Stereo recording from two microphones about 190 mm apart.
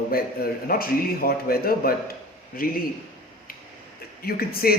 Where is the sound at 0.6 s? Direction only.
50° left (ahead or behind).